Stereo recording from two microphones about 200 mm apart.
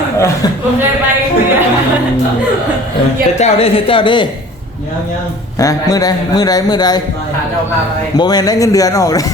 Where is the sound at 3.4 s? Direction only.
30° left (ahead or behind).